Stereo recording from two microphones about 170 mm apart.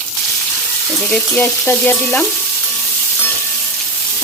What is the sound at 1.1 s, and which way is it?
Frying, 10° left (ahead or behind).